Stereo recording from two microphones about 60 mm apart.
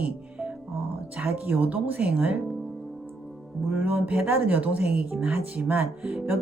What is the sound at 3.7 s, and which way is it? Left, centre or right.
Speech, right.